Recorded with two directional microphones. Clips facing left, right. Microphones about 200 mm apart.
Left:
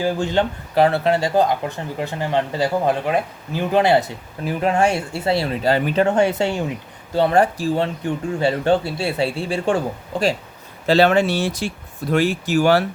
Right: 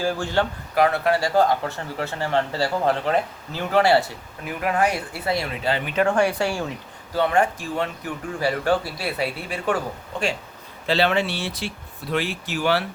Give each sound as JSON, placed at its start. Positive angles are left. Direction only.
{"t": 0.0, "sound": "speech", "side_deg": 20}
{"t": 6.1, "sound": "speech", "side_deg": 25}
{"t": 7.2, "sound": "speech", "side_deg": 35}
{"t": 10.8, "sound": "speech", "side_deg": 45}